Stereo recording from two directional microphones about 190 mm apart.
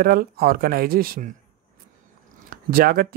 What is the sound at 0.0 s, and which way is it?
Speech, 50° right (ahead or behind).